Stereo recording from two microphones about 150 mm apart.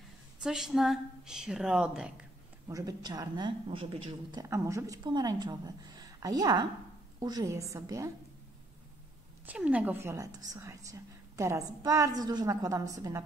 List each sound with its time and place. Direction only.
0.4 s a woman's voice: 5° right (ahead or behind)
2.7 s speech: 25° right (ahead or behind)
9.5 s speech: 10° right (ahead or behind)